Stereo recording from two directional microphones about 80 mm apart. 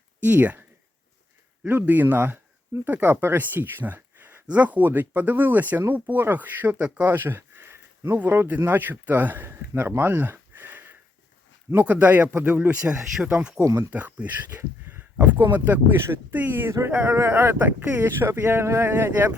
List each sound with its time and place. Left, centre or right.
0.2 s speech: right
1.6 s speech: right
13.7 s speech: right
13.9 s speech: centre